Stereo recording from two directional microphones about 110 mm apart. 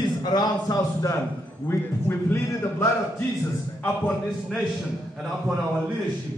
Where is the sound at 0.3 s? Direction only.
40° left (ahead or behind).